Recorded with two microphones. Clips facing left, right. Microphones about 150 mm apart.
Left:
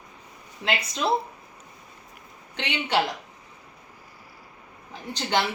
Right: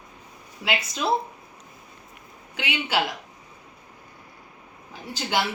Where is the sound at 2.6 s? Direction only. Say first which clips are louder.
Left 1 dB; 5° right (ahead or behind).